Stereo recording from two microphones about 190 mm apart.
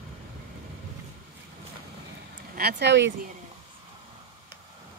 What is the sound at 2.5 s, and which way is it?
Speech, 60° right (ahead or behind).